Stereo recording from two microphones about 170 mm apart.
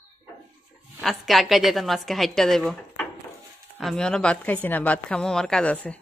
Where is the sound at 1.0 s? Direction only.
Centre (ahead or behind).